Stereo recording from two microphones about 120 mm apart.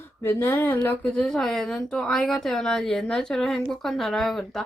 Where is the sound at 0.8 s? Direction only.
10° left (ahead or behind).